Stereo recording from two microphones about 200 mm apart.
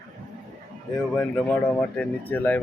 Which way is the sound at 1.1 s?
5° left (ahead or behind).